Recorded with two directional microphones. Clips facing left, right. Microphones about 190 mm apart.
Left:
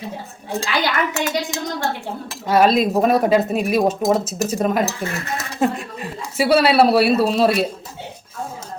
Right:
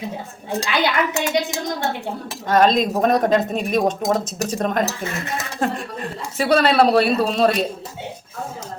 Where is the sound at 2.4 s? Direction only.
10° left (ahead or behind).